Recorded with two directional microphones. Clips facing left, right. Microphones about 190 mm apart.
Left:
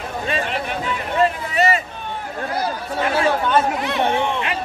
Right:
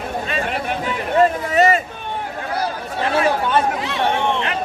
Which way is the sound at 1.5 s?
45° right (ahead or behind).